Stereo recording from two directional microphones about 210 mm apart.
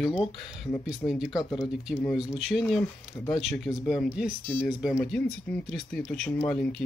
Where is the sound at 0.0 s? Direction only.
5° right (ahead or behind).